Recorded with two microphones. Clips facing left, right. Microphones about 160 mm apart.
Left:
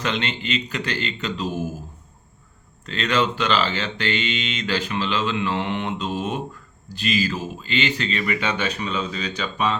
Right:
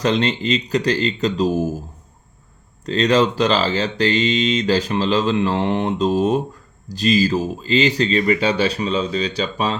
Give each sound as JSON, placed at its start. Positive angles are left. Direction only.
{"t": 0.0, "sound": "speech", "side_deg": -35}
{"t": 2.8, "sound": "speech", "side_deg": -35}